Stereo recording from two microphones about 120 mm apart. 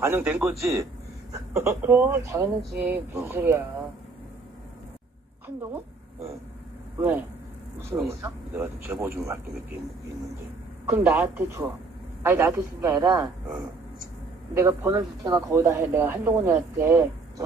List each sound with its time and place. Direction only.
0.0 s speech: 15° right (ahead or behind)
0.5 s speech: 25° right (ahead or behind)
7.0 s speech: 15° right (ahead or behind)
10.9 s speech: 20° right (ahead or behind)